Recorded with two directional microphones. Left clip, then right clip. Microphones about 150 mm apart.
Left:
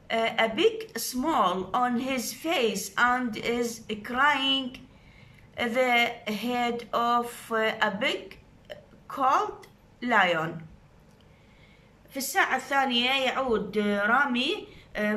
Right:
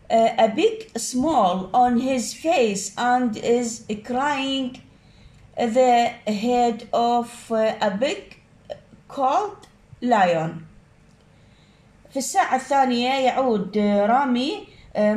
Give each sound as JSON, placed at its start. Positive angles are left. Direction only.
{"t": 0.1, "sound": "a woman's voice", "side_deg": -30}
{"t": 8.6, "sound": "a sound", "side_deg": -25}
{"t": 12.1, "sound": "a woman's voice", "side_deg": -30}